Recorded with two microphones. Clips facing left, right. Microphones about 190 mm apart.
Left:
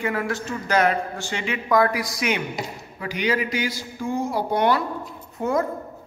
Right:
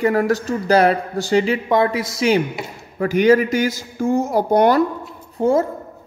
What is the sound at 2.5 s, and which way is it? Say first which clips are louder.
Speech: right 1 dB; 45° right (ahead or behind).